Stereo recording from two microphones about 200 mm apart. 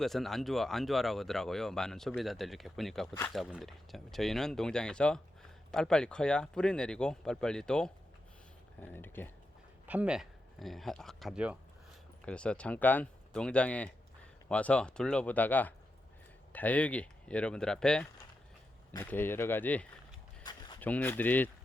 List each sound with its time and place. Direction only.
0.0 s speech: centre (ahead or behind)
9.8 s speech: 5° right (ahead or behind); by 19.9 s 10° left (ahead or behind)
20.4 s a sound: 20° left (ahead or behind)
20.8 s speech: 10° left (ahead or behind)